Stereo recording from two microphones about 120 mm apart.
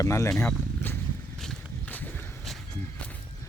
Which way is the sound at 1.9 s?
15° left (ahead or behind).